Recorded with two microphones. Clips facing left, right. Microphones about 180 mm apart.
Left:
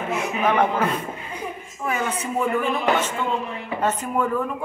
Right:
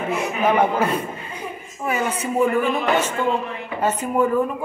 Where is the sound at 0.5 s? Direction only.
10° right (ahead or behind).